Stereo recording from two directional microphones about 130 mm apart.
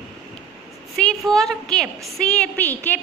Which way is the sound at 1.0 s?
5° left (ahead or behind).